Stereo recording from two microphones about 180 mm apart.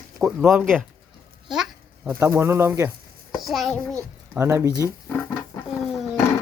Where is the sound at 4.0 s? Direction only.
15° right (ahead or behind).